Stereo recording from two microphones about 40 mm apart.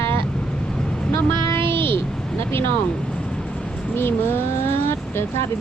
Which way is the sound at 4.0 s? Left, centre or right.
Left.